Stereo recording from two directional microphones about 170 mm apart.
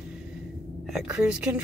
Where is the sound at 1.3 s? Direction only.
5° right (ahead or behind).